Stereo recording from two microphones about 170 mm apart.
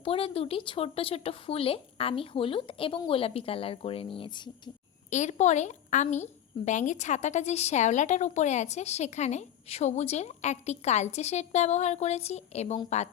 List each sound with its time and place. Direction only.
0.0 s a woman's voice: 35° left (ahead or behind)
5.1 s a woman's voice: 45° left (ahead or behind)